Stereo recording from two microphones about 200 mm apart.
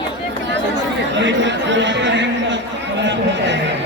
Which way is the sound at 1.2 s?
65° right (ahead or behind).